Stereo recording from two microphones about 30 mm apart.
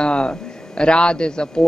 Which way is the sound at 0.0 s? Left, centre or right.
Left.